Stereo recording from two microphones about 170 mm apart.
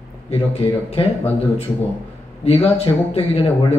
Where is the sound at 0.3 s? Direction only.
35° left (ahead or behind).